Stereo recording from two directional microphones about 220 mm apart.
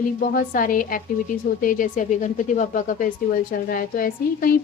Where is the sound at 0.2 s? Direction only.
40° left (ahead or behind).